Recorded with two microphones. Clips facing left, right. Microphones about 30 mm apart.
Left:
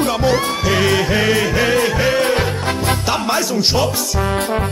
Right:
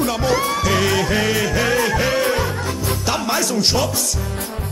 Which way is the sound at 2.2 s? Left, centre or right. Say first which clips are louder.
Left 3 dB; left.